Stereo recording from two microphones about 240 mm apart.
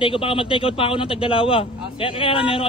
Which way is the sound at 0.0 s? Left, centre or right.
Left.